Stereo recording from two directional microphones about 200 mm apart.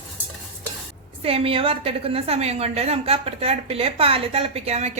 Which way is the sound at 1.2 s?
30° right (ahead or behind).